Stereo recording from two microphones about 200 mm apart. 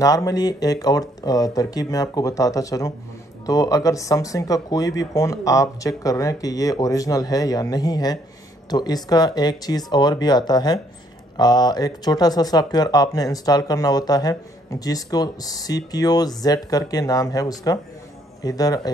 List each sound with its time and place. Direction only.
0.0 s speech: 20° left (ahead or behind)